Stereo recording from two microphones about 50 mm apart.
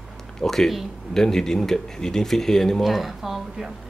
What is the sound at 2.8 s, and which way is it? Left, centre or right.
Speech, centre.